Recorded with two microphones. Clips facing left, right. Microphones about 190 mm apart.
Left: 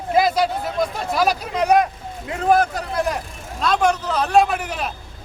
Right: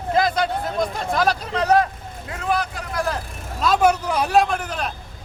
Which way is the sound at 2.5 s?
45° left (ahead or behind).